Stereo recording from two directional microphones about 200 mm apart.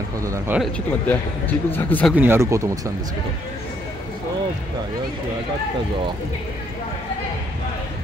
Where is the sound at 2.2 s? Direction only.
10° right (ahead or behind).